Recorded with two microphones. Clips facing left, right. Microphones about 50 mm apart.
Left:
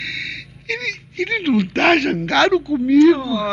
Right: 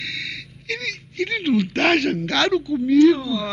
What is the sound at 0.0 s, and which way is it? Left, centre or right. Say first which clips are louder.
Speech: left 3 dB; left.